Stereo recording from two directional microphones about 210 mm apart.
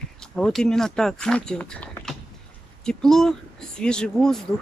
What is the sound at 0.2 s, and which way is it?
Speech, 5° left (ahead or behind).